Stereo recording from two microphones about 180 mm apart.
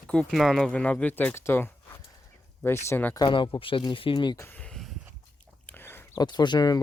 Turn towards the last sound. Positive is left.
turn(degrees=25)  # may be behind; listen again after turning